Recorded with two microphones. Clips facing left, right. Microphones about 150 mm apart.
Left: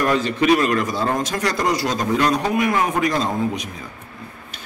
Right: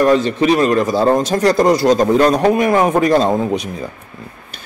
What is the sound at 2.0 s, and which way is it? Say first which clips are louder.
Speech: right 7 dB; 40° right (ahead or behind).